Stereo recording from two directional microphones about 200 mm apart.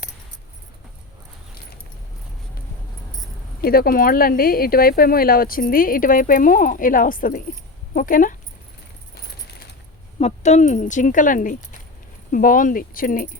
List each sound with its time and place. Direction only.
3.6 s speech: 50° left (ahead or behind)
9.1 s keys jangling: 50° left (ahead or behind)
10.2 s speech: 35° left (ahead or behind)